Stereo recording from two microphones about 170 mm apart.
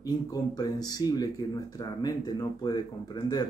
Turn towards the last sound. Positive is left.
turn(degrees=25)  # may be behind; listen again after turning